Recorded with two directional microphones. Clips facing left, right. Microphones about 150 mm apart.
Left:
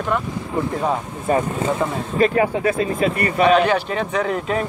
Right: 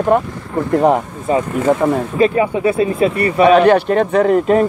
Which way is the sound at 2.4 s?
20° right (ahead or behind).